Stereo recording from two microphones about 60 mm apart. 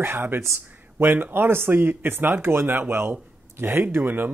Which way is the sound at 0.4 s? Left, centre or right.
Right.